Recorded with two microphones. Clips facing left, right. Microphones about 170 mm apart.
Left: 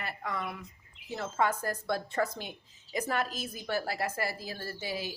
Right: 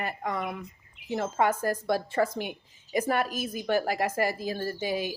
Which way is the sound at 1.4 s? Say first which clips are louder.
Right 3 dB; 10° right (ahead or behind).